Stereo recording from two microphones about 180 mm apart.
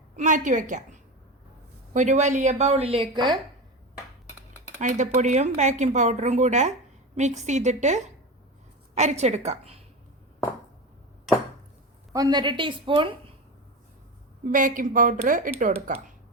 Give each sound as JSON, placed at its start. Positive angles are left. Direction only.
{"t": 0.2, "sound": "a woman's voice", "side_deg": -45}
{"t": 1.9, "sound": "speech", "side_deg": -45}
{"t": 4.8, "sound": "speech", "side_deg": -45}
{"t": 12.1, "sound": "a woman's voice", "side_deg": -20}
{"t": 14.5, "sound": "a woman's voice", "side_deg": -50}